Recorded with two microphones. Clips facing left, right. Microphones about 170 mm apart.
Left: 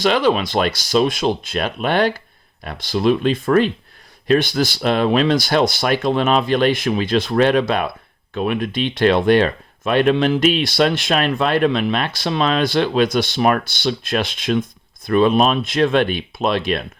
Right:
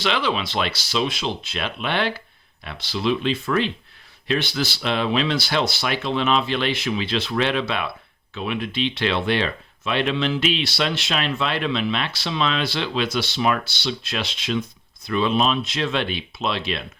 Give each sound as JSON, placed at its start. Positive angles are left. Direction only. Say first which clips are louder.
{"t": 0.0, "sound": "speech", "louder": "left 7 dB", "side_deg": 45}